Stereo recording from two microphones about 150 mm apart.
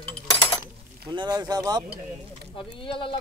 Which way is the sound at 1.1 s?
30° right (ahead or behind).